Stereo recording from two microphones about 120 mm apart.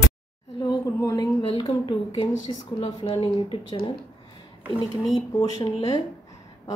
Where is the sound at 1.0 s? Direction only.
30° left (ahead or behind).